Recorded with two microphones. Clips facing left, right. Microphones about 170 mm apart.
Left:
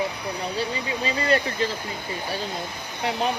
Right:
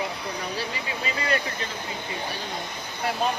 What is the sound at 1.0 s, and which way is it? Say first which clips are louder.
Speech: left 5 dB; 30° left (ahead or behind).